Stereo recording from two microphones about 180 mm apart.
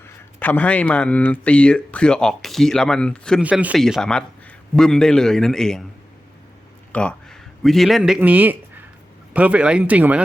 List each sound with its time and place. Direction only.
0.0 s speech: 10° left (ahead or behind)
3.4 s speech: 5° right (ahead or behind)
6.9 s speech: 5° left (ahead or behind)